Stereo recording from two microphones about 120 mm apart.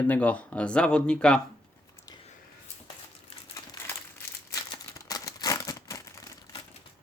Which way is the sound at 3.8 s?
25° left (ahead or behind).